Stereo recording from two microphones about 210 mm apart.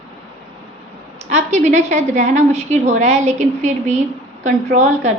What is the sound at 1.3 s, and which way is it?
A woman's voice, 35° right (ahead or behind).